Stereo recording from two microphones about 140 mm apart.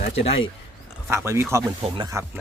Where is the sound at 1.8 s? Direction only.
35° right (ahead or behind).